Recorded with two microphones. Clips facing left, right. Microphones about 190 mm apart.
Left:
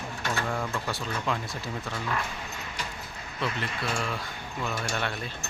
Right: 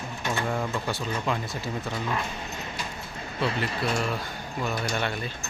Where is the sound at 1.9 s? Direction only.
20° right (ahead or behind).